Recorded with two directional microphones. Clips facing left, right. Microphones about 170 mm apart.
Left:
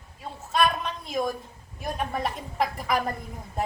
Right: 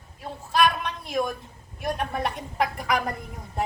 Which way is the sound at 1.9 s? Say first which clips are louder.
Right 1 dB; centre (ahead or behind).